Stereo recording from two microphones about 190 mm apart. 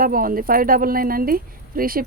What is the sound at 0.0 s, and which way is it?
Speech, 50° right (ahead or behind).